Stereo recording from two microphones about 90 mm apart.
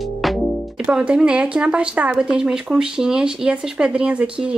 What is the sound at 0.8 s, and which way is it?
Speech, 10° right (ahead or behind).